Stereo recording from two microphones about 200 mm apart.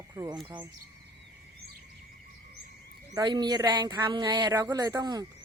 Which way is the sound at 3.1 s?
20° right (ahead or behind).